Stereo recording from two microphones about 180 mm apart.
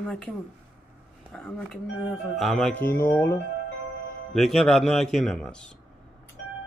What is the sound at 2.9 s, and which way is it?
Speech, 15° left (ahead or behind).